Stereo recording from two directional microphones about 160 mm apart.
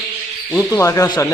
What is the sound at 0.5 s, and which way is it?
Speech, 15° left (ahead or behind).